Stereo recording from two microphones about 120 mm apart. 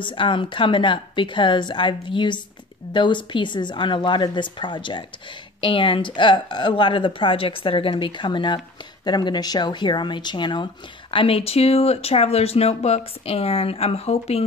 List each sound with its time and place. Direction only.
0.0 s speech: 45° left (ahead or behind); by 14.4 s 60° left (ahead or behind)